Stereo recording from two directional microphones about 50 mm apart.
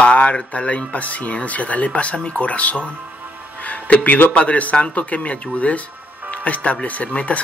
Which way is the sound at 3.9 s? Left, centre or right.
Left.